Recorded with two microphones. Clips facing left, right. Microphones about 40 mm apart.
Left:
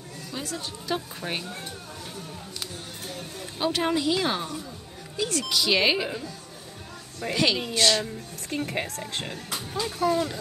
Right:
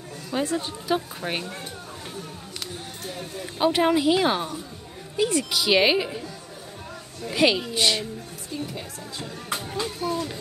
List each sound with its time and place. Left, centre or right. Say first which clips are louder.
0.3 s a woman's voice: right 9 dB; right
0.8 s speech: right 2 dB; centre
3.5 s speech: right 5 dB; centre
7.3 s speech: right 3 dB; centre
8.5 s speech: left 5 dB; left